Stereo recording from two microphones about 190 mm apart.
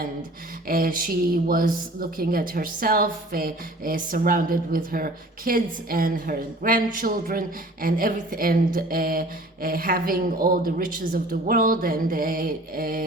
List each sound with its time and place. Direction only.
0.7 s a woman's voice: 50° right (ahead or behind)